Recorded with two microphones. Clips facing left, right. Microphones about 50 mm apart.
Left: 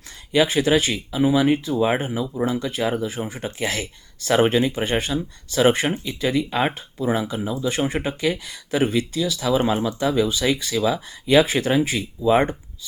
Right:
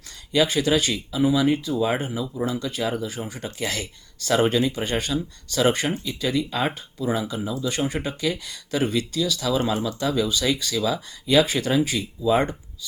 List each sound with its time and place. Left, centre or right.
0.3 s speech: left